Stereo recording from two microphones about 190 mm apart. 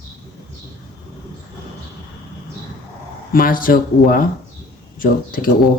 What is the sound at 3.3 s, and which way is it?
Speech, 45° left (ahead or behind).